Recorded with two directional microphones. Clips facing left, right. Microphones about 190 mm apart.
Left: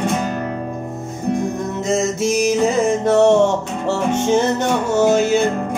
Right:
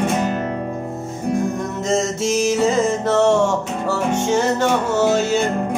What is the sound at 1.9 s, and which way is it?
Music, 10° left (ahead or behind).